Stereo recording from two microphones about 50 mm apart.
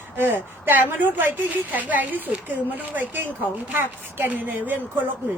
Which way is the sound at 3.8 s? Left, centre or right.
Right.